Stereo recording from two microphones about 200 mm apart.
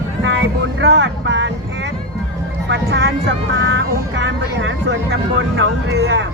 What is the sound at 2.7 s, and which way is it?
Vehicle, 65° right (ahead or behind).